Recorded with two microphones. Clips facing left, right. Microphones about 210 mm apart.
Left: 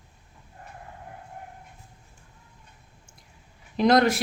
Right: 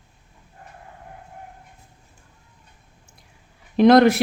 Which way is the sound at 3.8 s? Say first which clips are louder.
Right 7 dB; 60° right (ahead or behind).